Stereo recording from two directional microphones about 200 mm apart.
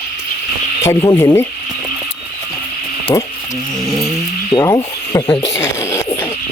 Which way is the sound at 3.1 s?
20° left (ahead or behind).